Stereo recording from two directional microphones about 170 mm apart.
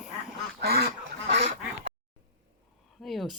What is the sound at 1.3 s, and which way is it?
Quack, 45° right (ahead or behind).